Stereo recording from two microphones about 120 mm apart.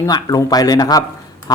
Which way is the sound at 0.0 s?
30° left (ahead or behind).